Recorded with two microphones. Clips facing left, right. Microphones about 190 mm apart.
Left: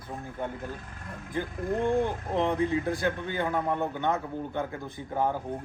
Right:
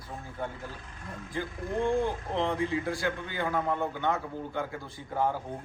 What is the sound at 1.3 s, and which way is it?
A man's voice, 20° left (ahead or behind).